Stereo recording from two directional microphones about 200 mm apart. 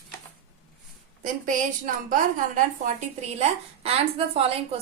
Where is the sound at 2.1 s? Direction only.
40° right (ahead or behind).